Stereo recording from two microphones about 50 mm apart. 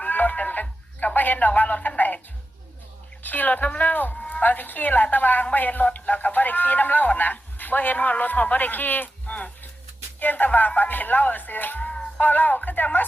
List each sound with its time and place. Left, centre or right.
0.0 s a sound: left
3.2 s speech: left
11.8 s music: left
12.2 s speech: left